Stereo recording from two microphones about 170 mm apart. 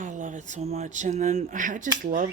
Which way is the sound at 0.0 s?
50° right (ahead or behind).